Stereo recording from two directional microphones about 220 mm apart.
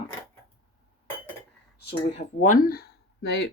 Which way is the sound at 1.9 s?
30° left (ahead or behind).